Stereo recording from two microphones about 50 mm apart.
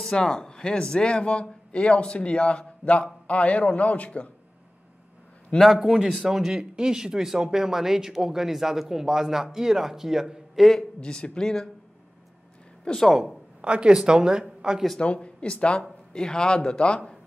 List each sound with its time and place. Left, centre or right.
0.0 s a man's voice: centre
5.7 s speech: centre
11.0 s speech: centre
12.8 s speech: centre
13.6 s a woman's voice: right
15.0 s a man's voice: left